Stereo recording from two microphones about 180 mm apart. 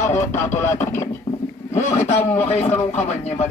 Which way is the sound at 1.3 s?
20° left (ahead or behind).